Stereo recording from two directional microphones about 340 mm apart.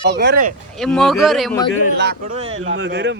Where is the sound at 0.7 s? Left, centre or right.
Centre.